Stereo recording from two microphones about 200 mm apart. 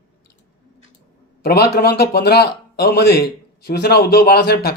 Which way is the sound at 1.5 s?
50° left (ahead or behind).